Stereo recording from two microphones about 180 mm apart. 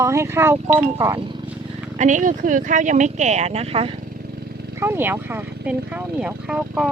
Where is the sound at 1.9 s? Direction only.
45° right (ahead or behind).